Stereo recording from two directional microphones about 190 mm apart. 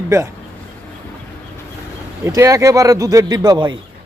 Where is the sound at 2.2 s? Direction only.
15° right (ahead or behind).